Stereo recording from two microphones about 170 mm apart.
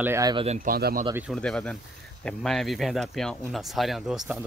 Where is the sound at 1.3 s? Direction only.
5° left (ahead or behind).